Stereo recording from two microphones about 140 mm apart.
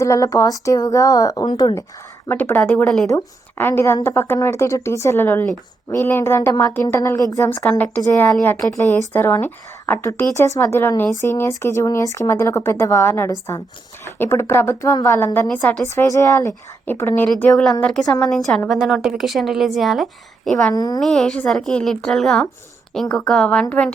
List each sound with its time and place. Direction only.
0.0 s speech: 25° left (ahead or behind)
2.2 s a woman's voice: 15° left (ahead or behind)
15.8 s speech: 20° left (ahead or behind)
17.2 s a woman's voice: 5° left (ahead or behind)
20.7 s speech: 30° left (ahead or behind)
21.0 s a woman's voice: 5° left (ahead or behind)